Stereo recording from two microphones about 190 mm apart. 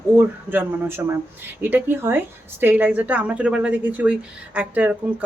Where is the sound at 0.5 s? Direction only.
10° right (ahead or behind).